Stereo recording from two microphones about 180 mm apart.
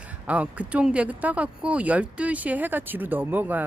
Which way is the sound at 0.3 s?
5° right (ahead or behind).